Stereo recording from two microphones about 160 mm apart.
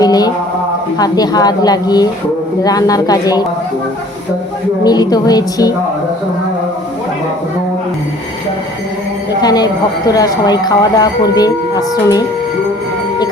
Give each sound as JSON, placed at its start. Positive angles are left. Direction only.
{"t": 0.0, "sound": "mantra", "side_deg": 25}
{"t": 0.9, "sound": "speech", "side_deg": 25}
{"t": 4.8, "sound": "speech", "side_deg": 25}
{"t": 9.4, "sound": "speech", "side_deg": 25}